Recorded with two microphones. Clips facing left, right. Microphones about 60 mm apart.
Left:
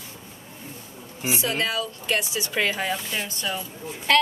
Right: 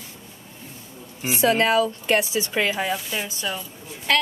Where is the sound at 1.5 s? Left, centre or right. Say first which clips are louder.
Right 7 dB; right.